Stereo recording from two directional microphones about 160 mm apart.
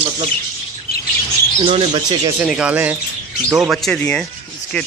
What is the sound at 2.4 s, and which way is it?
Speech, 5° right (ahead or behind).